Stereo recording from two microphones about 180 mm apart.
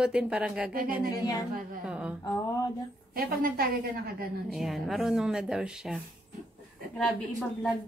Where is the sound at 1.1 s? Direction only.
20° left (ahead or behind).